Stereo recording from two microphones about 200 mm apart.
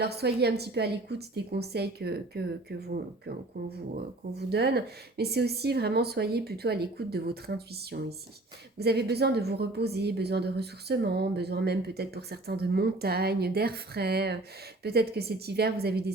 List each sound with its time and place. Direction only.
0.0 s a woman's voice: 55° right (ahead or behind)
4.4 s a woman's voice: 55° right (ahead or behind)